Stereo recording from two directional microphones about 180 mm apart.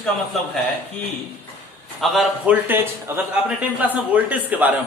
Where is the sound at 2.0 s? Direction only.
Centre (ahead or behind).